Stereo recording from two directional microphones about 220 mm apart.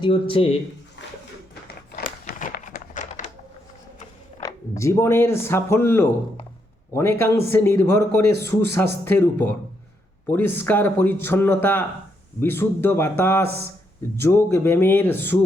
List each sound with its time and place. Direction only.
0.0 s speech: 25° left (ahead or behind)
1.0 s a sound: 50° left (ahead or behind); by 3.2 s 35° left (ahead or behind)
4.8 s speech: 10° left (ahead or behind)